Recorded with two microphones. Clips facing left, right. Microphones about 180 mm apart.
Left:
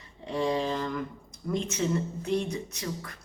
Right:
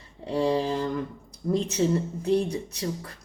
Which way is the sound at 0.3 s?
35° right (ahead or behind).